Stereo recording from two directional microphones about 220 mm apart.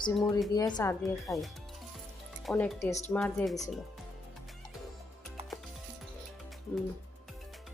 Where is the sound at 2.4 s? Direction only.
5° left (ahead or behind).